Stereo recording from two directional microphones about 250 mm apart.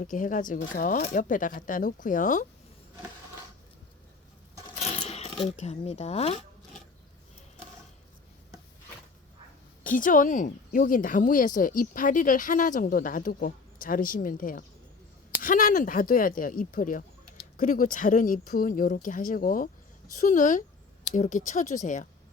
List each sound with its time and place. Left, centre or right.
0.0 s speech: left
4.8 s coin: left
5.5 s speech: left
9.8 s speech: left